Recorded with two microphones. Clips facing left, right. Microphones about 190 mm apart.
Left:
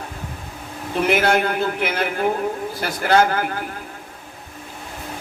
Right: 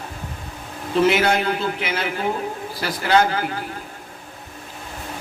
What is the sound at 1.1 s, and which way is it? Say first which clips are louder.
A man's voice: left 1 dB; 50° left (ahead or behind).